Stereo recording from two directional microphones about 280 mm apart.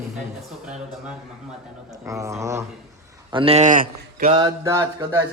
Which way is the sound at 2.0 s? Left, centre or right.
Centre.